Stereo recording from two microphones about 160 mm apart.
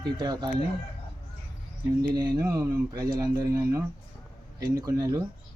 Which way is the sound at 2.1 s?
25° right (ahead or behind).